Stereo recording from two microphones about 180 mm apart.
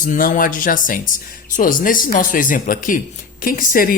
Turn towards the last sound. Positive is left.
turn(degrees=50)  # may be behind; listen again after turning